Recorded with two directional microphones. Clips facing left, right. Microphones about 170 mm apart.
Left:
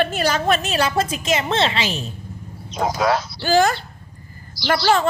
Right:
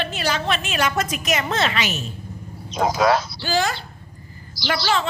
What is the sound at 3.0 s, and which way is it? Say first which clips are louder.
Speech: right 2 dB; 90° right.